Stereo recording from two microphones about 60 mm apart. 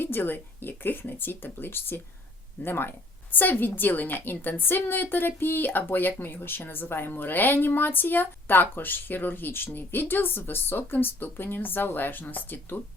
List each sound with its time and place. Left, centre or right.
0.0 s a woman's voice: left